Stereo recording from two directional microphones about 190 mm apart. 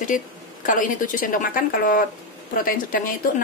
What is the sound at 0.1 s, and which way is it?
Speech, 45° left (ahead or behind).